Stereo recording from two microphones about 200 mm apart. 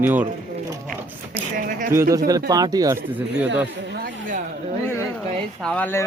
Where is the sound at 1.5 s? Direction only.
45° right (ahead or behind).